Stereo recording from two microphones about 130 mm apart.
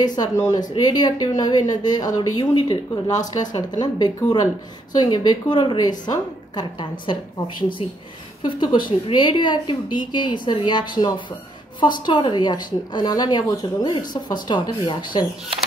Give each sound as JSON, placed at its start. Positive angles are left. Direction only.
{"t": 0.0, "sound": "speech", "side_deg": 30}